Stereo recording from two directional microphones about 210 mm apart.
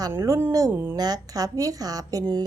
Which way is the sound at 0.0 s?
15° right (ahead or behind).